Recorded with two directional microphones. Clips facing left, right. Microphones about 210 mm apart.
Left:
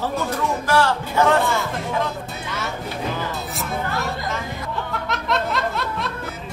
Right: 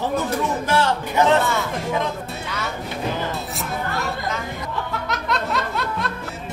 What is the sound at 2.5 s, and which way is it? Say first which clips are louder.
Music: left 1 dB; centre (ahead or behind).